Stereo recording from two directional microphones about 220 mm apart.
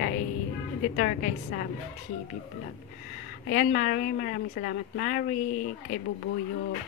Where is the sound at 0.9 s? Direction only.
40° left (ahead or behind).